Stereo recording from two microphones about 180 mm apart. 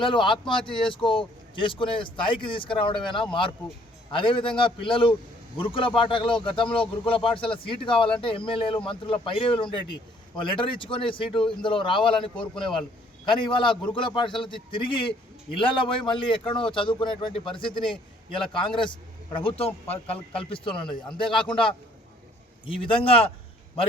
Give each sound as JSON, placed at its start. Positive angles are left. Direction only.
{"t": 0.0, "sound": "speech", "side_deg": 25}
{"t": 4.1, "sound": "speech", "side_deg": 30}
{"t": 22.6, "sound": "speech", "side_deg": 30}